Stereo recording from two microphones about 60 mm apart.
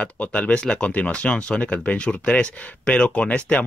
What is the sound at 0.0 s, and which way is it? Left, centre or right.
Speech, left.